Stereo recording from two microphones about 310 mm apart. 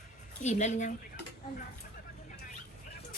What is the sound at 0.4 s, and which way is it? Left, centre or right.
Speech, left.